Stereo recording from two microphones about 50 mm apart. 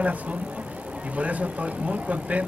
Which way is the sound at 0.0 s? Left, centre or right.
Right.